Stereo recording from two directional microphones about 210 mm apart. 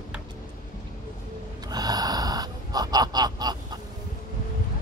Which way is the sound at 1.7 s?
20° right (ahead or behind).